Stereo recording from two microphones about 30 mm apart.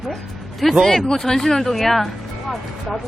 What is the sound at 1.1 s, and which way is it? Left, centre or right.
Speech, centre.